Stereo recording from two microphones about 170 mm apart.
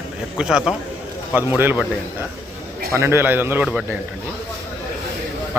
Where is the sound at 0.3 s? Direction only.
5° right (ahead or behind).